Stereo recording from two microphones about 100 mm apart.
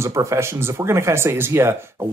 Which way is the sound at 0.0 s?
30° right (ahead or behind).